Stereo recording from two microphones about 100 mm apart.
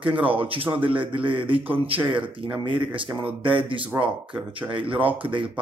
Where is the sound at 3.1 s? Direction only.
15° right (ahead or behind).